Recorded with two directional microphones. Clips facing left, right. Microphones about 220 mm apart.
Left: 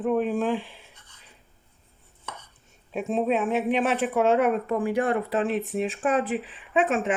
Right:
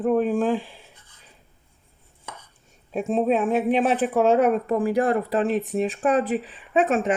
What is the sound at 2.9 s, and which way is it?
A woman's voice, 40° right (ahead or behind).